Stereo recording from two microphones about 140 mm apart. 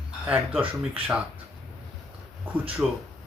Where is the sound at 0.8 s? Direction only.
10° right (ahead or behind).